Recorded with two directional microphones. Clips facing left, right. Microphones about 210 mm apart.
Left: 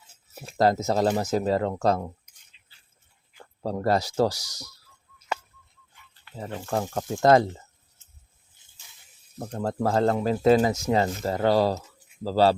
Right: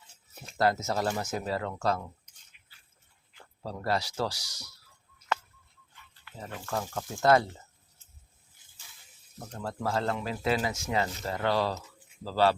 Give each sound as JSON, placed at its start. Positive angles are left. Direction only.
{"t": 0.6, "sound": "speech", "side_deg": 35}
{"t": 3.6, "sound": "speech", "side_deg": 45}
{"t": 6.2, "sound": "speech", "side_deg": 30}
{"t": 9.6, "sound": "speech", "side_deg": 40}